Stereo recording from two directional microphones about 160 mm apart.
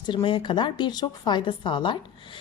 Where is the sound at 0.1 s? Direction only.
30° left (ahead or behind).